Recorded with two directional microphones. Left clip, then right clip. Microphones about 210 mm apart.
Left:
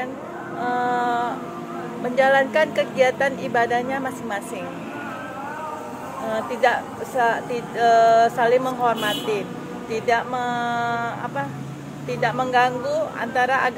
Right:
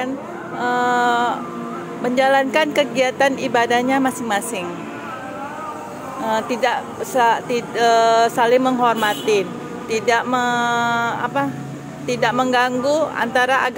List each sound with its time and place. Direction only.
0.6 s a sound: 55° right (ahead or behind)
2.1 s speech: 55° right (ahead or behind)
6.2 s speech: 55° right (ahead or behind)